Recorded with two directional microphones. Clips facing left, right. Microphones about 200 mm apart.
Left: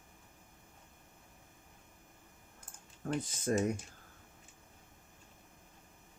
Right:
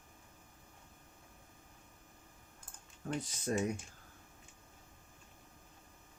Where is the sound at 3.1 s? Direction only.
40° left (ahead or behind).